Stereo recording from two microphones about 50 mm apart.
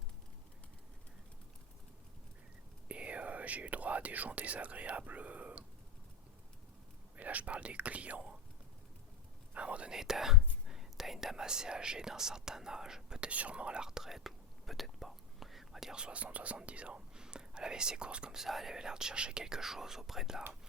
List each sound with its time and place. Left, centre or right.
2.9 s whispering: right
7.2 s speech: right
9.6 s whispering: right
9.9 s speech: centre
16.0 s speech: right
18.4 s speech: centre